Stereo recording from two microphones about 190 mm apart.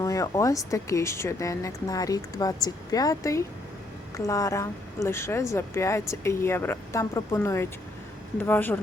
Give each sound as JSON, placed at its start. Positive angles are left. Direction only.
{"t": 0.0, "sound": "speech", "side_deg": 15}